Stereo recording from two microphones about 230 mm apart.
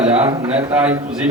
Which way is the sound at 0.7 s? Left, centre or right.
Centre.